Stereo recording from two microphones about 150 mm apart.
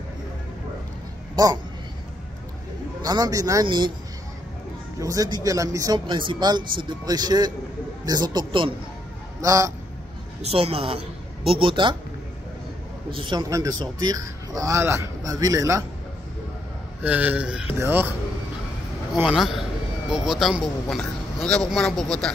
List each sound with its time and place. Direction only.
1.3 s speech: 25° right (ahead or behind)
3.0 s a woman's voice: 25° right (ahead or behind)
5.0 s speech: 25° right (ahead or behind)
9.4 s speech: 20° right (ahead or behind)
10.4 s a woman's voice: 40° right (ahead or behind)
13.1 s speech: 30° right (ahead or behind)
17.0 s a man's voice: 10° right (ahead or behind)
19.1 s speech: 5° right (ahead or behind)